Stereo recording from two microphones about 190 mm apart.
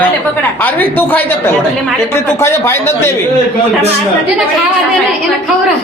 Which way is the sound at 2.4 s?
15° left (ahead or behind).